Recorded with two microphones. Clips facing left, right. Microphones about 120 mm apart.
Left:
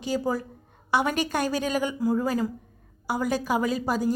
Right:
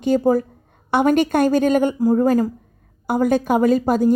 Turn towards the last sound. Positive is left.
turn(degrees=-50)  # may be behind; listen again after turning